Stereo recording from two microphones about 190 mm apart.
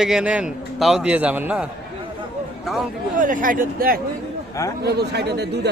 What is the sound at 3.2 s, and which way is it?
Speech, 45° right (ahead or behind).